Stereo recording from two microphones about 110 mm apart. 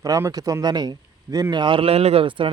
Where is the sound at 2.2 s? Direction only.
50° right (ahead or behind).